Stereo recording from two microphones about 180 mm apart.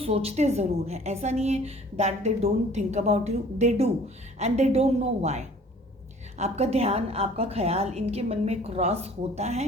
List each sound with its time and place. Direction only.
0.0 s a woman's voice: 35° right (ahead or behind)